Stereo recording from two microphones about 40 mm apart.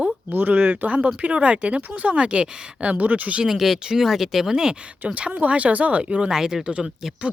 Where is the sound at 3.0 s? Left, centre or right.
Right.